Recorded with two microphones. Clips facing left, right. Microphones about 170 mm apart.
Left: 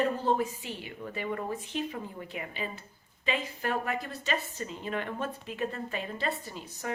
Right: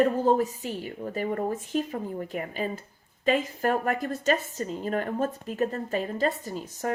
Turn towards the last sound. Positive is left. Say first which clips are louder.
# right 7 dB
turn(degrees=-45)  # may be behind; listen again after turning